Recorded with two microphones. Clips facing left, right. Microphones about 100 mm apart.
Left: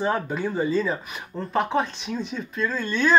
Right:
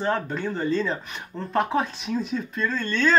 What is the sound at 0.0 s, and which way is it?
Speech, 10° left (ahead or behind).